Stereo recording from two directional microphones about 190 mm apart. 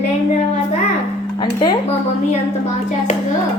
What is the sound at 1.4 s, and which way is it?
Music, 20° left (ahead or behind).